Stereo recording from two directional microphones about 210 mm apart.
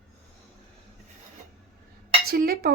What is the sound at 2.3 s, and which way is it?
Speech, 45° right (ahead or behind).